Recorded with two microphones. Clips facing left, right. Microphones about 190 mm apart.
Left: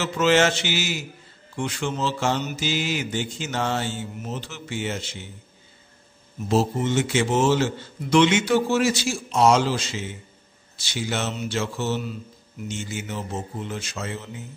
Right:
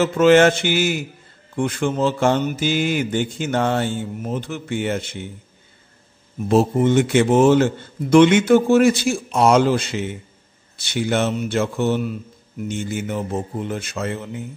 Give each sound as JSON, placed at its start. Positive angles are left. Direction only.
{"t": 0.0, "sound": "speech", "side_deg": -55}
{"t": 6.5, "sound": "a man's voice", "side_deg": -55}